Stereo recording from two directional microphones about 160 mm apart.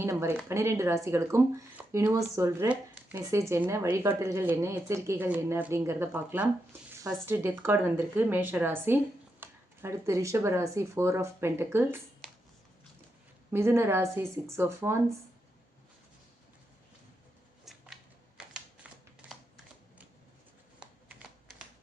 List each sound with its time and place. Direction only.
0.0 s speech: 15° right (ahead or behind)
13.5 s speech: 15° right (ahead or behind)
17.7 s a sound: centre (ahead or behind)
18.3 s typing: 5° right (ahead or behind)
20.7 s shuffling cards: 5° right (ahead or behind)